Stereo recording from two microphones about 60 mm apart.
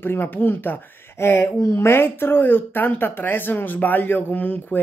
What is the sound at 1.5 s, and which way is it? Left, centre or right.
Speech, left.